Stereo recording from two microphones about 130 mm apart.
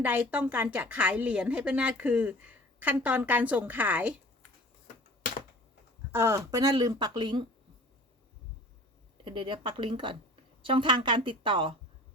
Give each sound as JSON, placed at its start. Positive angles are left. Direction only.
{"t": 0.0, "sound": "a woman's voice", "side_deg": -15}
{"t": 6.1, "sound": "speech", "side_deg": -20}
{"t": 9.2, "sound": "a woman's voice", "side_deg": -40}